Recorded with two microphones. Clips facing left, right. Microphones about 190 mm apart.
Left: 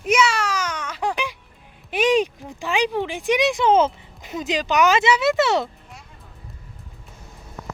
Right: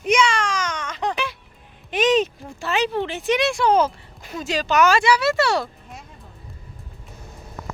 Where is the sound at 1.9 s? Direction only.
10° left (ahead or behind).